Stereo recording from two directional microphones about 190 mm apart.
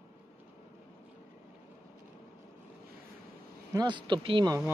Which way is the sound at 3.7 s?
20° right (ahead or behind).